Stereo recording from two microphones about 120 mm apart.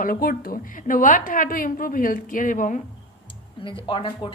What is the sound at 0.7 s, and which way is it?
A woman's voice, 90° left.